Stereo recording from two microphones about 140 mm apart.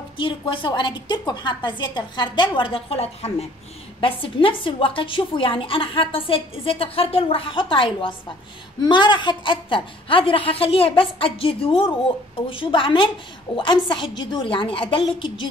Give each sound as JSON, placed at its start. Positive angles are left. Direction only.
{"t": 0.2, "sound": "a woman's voice", "side_deg": 35}